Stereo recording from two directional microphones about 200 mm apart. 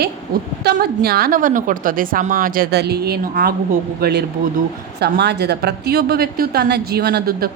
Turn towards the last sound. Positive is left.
turn(degrees=-50)  # may be behind; listen again after turning